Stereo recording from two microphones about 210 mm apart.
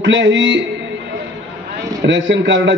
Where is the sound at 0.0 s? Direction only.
60° right (ahead or behind).